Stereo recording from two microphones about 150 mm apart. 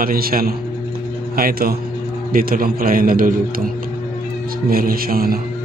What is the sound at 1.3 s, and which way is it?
Music, 85° right.